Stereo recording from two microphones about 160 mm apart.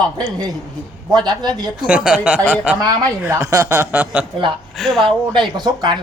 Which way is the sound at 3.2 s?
20° right (ahead or behind).